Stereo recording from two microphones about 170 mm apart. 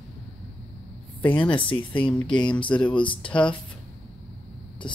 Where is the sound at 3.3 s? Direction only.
5° left (ahead or behind).